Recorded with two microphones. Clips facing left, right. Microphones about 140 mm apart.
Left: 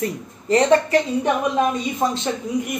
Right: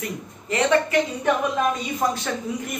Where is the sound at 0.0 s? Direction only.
35° left (ahead or behind).